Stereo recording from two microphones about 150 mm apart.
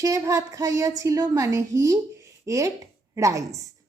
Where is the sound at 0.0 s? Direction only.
20° right (ahead or behind).